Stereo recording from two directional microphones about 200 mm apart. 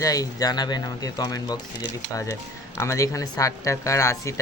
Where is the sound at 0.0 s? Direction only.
15° left (ahead or behind).